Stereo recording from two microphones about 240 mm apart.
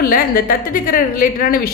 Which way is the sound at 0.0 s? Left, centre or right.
Left.